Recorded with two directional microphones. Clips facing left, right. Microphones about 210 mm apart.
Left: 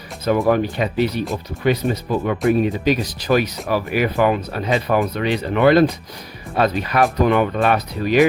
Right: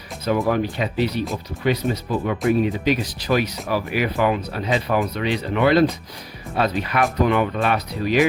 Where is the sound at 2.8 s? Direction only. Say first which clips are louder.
Left 2 dB; 40° left (ahead or behind).